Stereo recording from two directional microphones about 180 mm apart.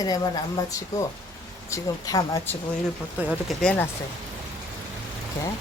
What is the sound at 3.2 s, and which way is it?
Speech, 5° right (ahead or behind).